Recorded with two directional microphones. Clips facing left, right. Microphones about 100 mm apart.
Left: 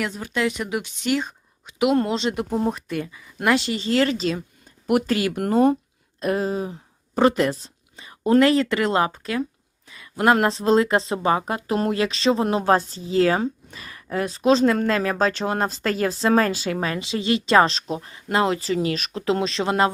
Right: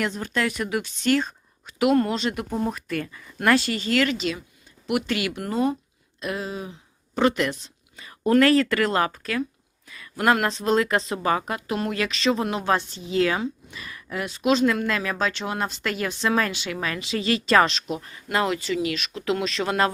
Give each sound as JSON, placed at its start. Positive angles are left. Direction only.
{"t": 0.0, "sound": "a woman's voice", "side_deg": 5}